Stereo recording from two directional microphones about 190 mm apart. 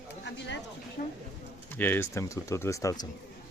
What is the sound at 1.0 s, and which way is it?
Speech, 50° left (ahead or behind).